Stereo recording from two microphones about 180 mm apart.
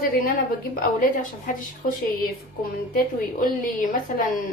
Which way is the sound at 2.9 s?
50° left (ahead or behind).